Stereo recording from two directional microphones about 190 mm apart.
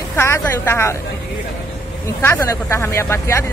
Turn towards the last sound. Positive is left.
turn(degrees=15)  # may be behind; listen again after turning